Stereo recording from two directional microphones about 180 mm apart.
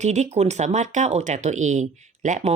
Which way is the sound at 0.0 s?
40° right (ahead or behind).